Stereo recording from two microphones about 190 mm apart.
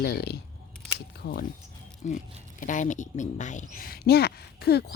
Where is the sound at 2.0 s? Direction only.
40° left (ahead or behind); by 4.8 s 60° left (ahead or behind).